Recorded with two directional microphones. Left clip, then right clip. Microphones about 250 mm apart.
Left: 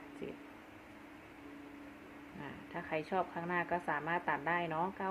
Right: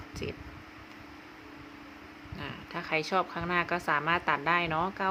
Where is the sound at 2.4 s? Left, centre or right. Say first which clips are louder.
Right 7 dB; right.